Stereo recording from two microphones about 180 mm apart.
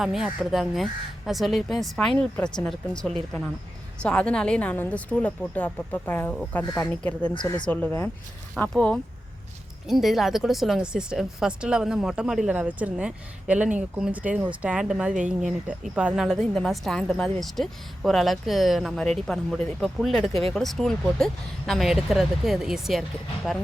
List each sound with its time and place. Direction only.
0.0 s a woman's voice: centre (ahead or behind)
7.3 s speech: 25° left (ahead or behind)
7.7 s a woman's voice: 10° left (ahead or behind)